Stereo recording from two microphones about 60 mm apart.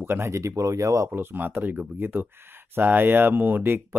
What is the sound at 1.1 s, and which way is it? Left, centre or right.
Speech, right.